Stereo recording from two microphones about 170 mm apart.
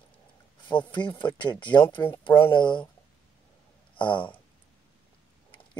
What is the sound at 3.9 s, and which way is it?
Speech, 30° left (ahead or behind).